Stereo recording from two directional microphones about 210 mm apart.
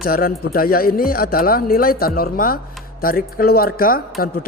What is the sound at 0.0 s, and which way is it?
A man's voice, 45° left (ahead or behind).